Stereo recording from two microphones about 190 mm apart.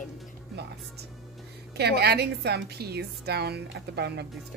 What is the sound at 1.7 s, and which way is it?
A woman's voice, 60° right (ahead or behind).